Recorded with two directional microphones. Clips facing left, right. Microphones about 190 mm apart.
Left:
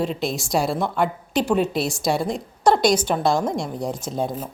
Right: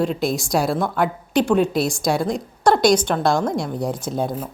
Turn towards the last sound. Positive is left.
turn(degrees=0)  # may be behind; listen again after turning